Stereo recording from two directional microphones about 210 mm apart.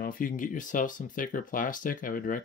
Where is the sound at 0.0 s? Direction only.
40° left (ahead or behind).